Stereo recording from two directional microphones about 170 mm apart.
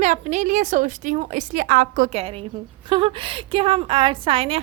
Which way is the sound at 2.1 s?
35° right (ahead or behind).